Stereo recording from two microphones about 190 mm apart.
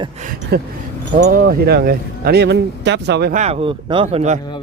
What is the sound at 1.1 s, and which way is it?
Speech, 45° right (ahead or behind).